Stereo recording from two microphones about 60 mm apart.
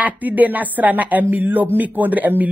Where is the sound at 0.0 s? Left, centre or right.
Right.